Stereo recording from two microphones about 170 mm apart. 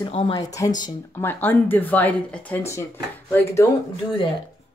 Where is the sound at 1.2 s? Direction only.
10° left (ahead or behind).